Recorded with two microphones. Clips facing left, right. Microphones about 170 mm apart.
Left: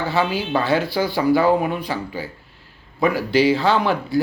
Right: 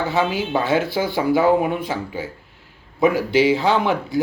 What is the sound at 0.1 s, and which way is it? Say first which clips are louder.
Speech: even; 20° right (ahead or behind).